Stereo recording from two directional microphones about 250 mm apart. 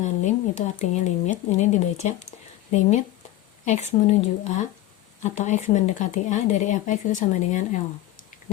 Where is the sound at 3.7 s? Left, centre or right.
Left.